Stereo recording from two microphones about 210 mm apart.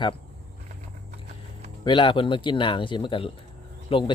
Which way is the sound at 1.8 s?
25° left (ahead or behind).